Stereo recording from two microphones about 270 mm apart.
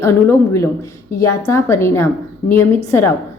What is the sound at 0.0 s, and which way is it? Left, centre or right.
A woman's voice, centre.